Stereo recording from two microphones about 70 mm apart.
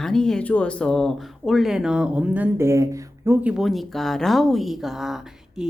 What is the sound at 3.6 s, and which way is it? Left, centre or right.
Speech, centre.